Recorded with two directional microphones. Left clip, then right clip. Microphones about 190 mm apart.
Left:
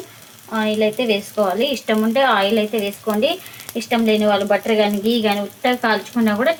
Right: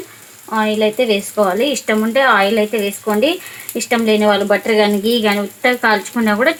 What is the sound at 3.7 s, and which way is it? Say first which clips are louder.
Speech: right 3 dB; 45° right (ahead or behind).